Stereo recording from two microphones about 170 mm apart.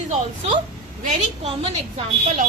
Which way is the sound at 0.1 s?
45° right (ahead or behind).